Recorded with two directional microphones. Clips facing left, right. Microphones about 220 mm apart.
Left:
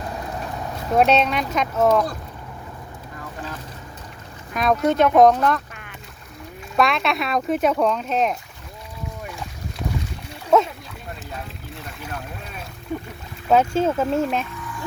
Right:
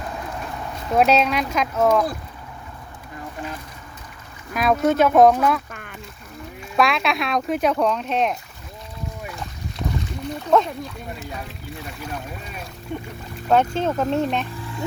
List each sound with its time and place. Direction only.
0.9 s speech: centre (ahead or behind)
4.5 s speech: 5° right (ahead or behind)
6.7 s speech: centre (ahead or behind)
10.2 s splash: 5° left (ahead or behind)
11.9 s speech: centre (ahead or behind)
14.5 s music: 30° right (ahead or behind)